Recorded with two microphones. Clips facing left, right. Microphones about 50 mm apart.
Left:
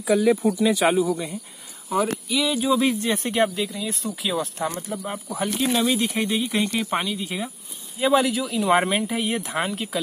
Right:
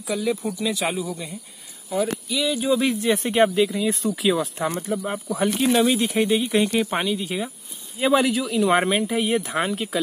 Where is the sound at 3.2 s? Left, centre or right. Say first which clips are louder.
Right 6 dB; centre.